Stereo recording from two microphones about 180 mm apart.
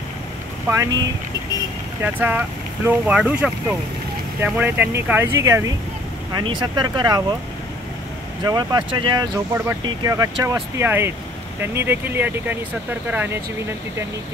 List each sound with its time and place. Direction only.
0.7 s speech: 15° right (ahead or behind)
2.0 s speech: 10° right (ahead or behind)
8.5 s speech: 25° right (ahead or behind)